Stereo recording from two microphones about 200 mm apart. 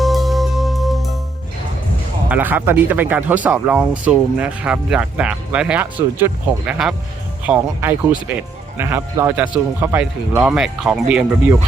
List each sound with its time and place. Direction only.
0.0 s music: centre (ahead or behind)
2.3 s speech: 10° right (ahead or behind)